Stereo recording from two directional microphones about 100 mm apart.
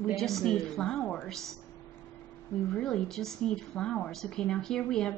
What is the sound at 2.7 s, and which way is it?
A woman's voice, 5° left (ahead or behind).